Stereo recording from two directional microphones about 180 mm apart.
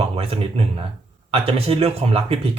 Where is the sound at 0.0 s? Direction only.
30° right (ahead or behind).